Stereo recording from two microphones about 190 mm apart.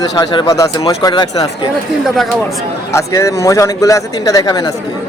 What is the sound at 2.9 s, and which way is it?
Speech, 15° left (ahead or behind).